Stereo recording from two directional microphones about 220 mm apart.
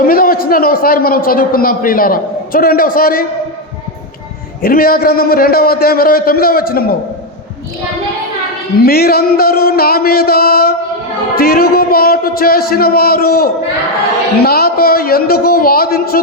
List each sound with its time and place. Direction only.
0.0 s a man's voice: 40° left (ahead or behind)
4.6 s a man's voice: 40° left (ahead or behind)
8.8 s a man's voice: 45° left (ahead or behind)